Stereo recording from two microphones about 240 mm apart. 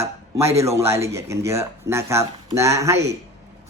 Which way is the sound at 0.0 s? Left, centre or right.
Centre.